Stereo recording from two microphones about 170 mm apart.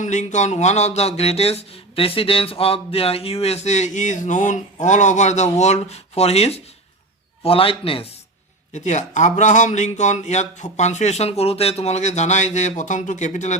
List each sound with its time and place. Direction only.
0.0 s speech: 45° left (ahead or behind)
8.7 s a man's voice: 45° left (ahead or behind)